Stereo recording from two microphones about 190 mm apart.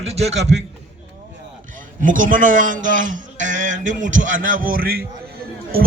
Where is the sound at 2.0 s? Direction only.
45° right (ahead or behind).